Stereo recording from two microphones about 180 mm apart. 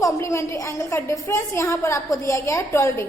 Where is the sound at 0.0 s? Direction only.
15° left (ahead or behind).